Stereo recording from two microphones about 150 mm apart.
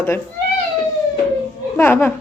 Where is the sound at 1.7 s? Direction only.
15° left (ahead or behind).